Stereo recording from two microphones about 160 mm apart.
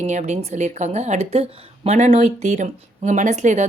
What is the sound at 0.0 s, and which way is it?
Speech, 45° right (ahead or behind).